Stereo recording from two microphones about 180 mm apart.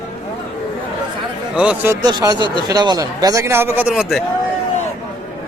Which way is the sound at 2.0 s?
20° right (ahead or behind).